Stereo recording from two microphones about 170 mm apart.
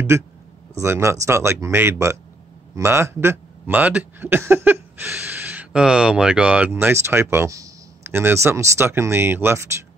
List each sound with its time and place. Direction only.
0.1 s speech: 15° right (ahead or behind)